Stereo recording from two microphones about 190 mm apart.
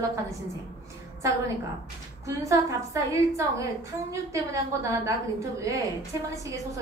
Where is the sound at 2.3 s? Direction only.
15° right (ahead or behind).